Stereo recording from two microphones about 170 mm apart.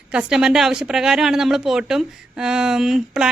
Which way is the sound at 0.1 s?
5° right (ahead or behind).